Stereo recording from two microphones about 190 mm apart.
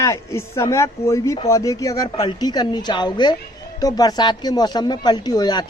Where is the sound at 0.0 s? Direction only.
15° left (ahead or behind).